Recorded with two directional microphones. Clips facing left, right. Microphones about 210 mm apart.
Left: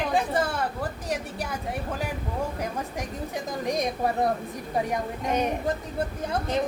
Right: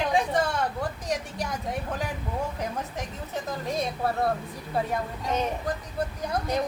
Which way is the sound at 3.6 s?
15° left (ahead or behind).